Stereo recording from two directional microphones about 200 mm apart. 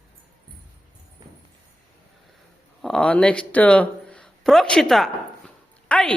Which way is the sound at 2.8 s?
5° left (ahead or behind).